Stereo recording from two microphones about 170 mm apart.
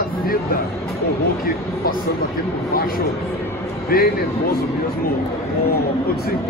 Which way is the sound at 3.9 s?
55° left (ahead or behind).